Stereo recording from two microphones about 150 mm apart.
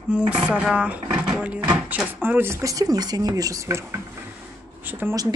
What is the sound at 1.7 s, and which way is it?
Speech, 10° right (ahead or behind).